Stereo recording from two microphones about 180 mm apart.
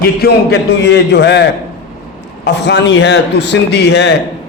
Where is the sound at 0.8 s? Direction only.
75° left (ahead or behind).